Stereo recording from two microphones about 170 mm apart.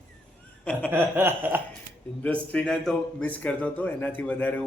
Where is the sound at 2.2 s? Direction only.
5° left (ahead or behind).